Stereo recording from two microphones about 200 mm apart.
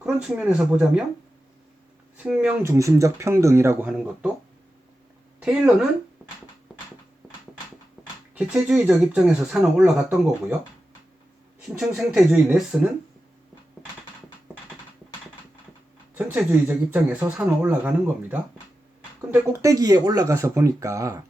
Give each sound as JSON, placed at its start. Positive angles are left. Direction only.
{"t": 0.0, "sound": "speech", "side_deg": -5}
{"t": 2.1, "sound": "speech", "side_deg": -5}
{"t": 5.4, "sound": "speech", "side_deg": -5}
{"t": 8.4, "sound": "speech", "side_deg": -5}
{"t": 11.8, "sound": "speech", "side_deg": 0}
{"t": 16.1, "sound": "speech", "side_deg": -10}